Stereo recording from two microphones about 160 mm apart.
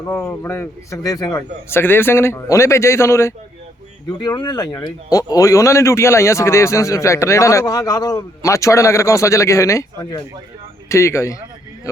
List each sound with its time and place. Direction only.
0.0 s a man's voice: 10° left (ahead or behind)